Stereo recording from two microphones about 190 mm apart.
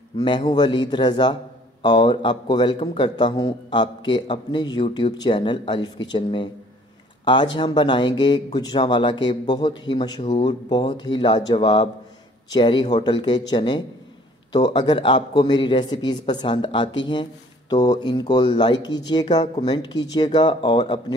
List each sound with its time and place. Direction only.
0.2 s speech: 25° left (ahead or behind)